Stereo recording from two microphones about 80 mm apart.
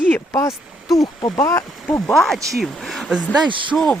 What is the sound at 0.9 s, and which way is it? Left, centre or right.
Speech, left.